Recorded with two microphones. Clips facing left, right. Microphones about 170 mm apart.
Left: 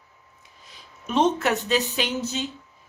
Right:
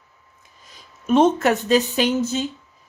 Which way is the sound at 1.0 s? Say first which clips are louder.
Right 6 dB; 50° right (ahead or behind).